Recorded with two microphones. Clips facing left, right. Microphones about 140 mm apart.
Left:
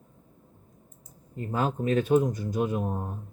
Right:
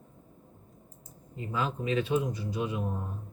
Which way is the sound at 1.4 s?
45° left (ahead or behind).